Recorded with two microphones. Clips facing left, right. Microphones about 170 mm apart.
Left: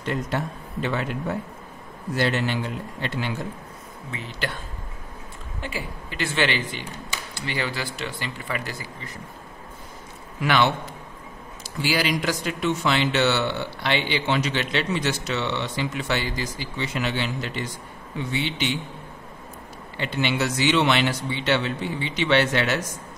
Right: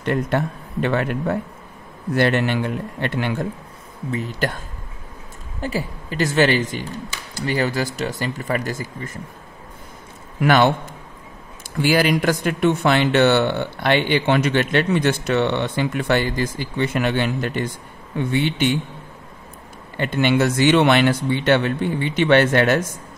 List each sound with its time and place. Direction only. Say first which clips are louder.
0.0 s speech: right 6 dB; 55° right (ahead or behind)
4.1 s speech: right 8 dB; 40° right (ahead or behind)
5.6 s a woman's voice: right 7 dB; 40° right (ahead or behind)
10.4 s speech: right 5 dB; 45° right (ahead or behind)
11.8 s speech: right 6 dB; 55° right (ahead or behind)
20.0 s speech: right 7 dB; 50° right (ahead or behind)